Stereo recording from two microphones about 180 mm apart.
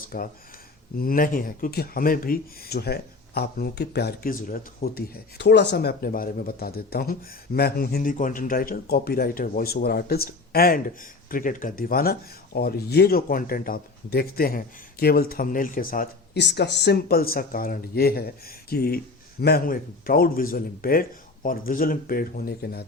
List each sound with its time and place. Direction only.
0.1 s speech: 55° left (ahead or behind)